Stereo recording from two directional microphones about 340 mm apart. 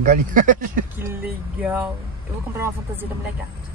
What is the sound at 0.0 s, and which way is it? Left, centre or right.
Speech, right.